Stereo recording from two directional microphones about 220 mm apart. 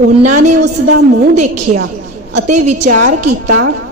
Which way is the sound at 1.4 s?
30° right (ahead or behind).